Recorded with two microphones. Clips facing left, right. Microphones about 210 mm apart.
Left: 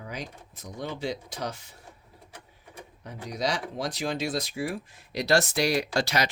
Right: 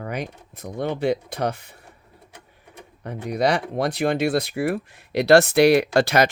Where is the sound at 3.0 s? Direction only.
60° right (ahead or behind).